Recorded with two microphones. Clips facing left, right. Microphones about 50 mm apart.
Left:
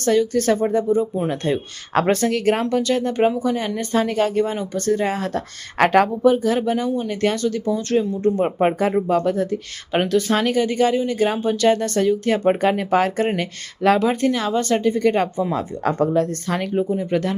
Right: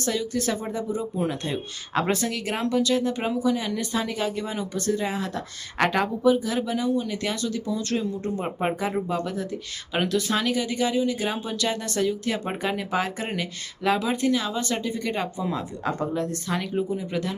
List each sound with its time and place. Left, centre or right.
0.0 s speech: left
9.0 s speech: left